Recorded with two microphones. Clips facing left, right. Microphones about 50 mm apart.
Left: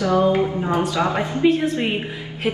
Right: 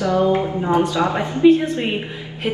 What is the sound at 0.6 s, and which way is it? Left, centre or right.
Speech, right.